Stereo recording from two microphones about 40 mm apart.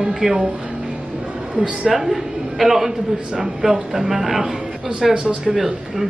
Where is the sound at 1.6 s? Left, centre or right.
Centre.